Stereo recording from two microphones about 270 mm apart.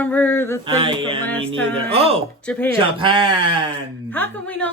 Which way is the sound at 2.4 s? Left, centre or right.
Centre.